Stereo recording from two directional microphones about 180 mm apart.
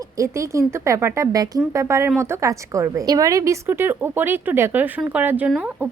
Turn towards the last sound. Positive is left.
turn(degrees=-5)  # may be behind; listen again after turning